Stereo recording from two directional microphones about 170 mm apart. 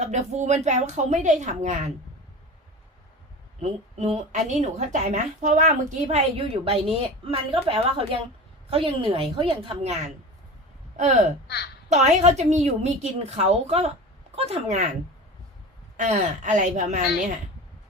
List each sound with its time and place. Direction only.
0.0 s a woman's voice: 40° right (ahead or behind)
3.6 s a woman's voice: 40° right (ahead or behind)
11.4 s a woman's voice: 75° left (ahead or behind)
11.9 s a woman's voice: 45° right (ahead or behind)
16.0 s a woman's voice: 45° right (ahead or behind)